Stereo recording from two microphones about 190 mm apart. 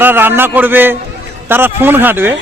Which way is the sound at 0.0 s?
10° right (ahead or behind).